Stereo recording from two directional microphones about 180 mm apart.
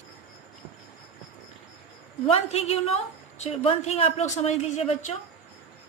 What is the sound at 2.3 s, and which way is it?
A woman's voice, 35° left (ahead or behind).